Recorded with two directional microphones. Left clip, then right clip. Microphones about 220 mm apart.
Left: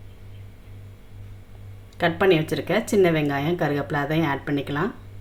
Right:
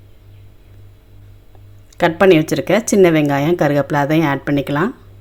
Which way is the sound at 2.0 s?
40° right (ahead or behind).